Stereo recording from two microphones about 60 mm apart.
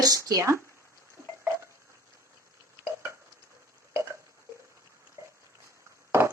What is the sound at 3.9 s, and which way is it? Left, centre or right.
Clock, right.